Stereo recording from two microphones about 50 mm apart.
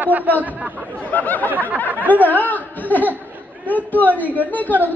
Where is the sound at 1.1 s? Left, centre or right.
Left.